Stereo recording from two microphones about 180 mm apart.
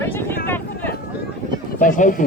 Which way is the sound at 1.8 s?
45° left (ahead or behind).